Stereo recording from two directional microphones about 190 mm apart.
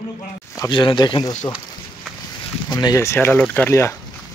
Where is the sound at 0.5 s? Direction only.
20° left (ahead or behind).